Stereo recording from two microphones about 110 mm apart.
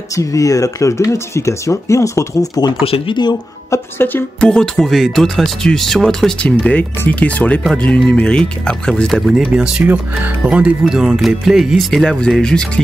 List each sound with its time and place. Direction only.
0.1 s speech: 30° left (ahead or behind)
2.8 s speech: 60° left (ahead or behind)
3.7 s speech: 20° left (ahead or behind)
4.4 s speech: 5° left (ahead or behind)
9.4 s speech: 10° right (ahead or behind); by 12.8 s 5° left (ahead or behind)